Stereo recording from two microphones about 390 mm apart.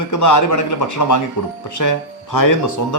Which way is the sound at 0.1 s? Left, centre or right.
Left.